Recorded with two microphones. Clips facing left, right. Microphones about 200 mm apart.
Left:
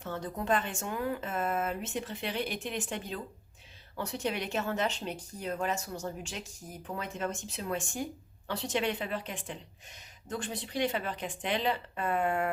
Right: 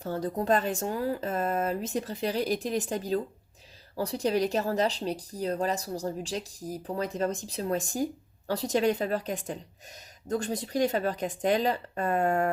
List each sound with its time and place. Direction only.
0.0 s speech: 35° right (ahead or behind)